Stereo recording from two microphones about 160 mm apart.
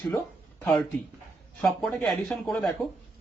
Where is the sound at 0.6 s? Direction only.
5° left (ahead or behind).